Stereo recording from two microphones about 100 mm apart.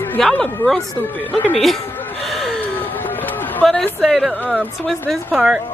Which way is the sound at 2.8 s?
20° left (ahead or behind).